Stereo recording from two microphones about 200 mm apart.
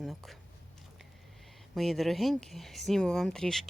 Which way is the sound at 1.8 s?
Centre (ahead or behind).